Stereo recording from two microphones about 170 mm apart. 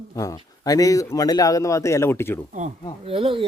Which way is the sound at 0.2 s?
20° left (ahead or behind).